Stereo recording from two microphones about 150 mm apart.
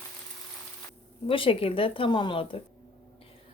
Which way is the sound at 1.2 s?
35° left (ahead or behind).